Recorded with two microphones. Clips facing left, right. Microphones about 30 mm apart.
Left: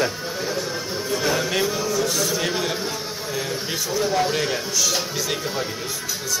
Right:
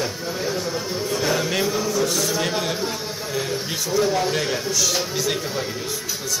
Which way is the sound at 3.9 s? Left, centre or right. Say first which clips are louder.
Right 1 dB; centre.